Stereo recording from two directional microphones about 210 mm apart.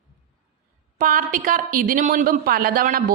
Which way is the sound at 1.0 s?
40° right (ahead or behind).